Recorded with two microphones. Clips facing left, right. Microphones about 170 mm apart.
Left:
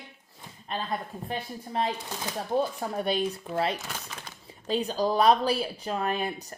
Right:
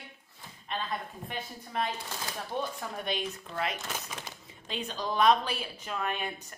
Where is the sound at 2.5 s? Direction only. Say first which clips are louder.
Left 8 dB; 35° left (ahead or behind).